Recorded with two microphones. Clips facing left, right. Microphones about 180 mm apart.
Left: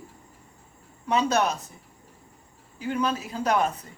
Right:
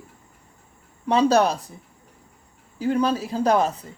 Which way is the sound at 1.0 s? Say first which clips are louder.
Right 5 dB; 30° right (ahead or behind).